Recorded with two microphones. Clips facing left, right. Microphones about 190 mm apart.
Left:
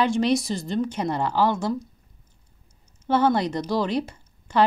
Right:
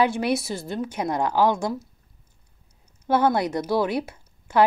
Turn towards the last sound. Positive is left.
turn(degrees=-10)  # may be behind; listen again after turning